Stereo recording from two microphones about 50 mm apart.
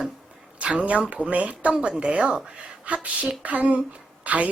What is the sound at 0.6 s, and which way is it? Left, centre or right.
A woman's voice, right.